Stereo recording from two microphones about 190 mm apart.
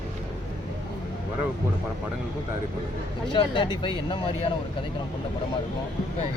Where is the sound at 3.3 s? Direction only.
25° left (ahead or behind).